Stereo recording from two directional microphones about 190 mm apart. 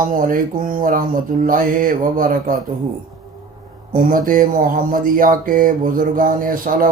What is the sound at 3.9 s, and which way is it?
Speech, 45° right (ahead or behind).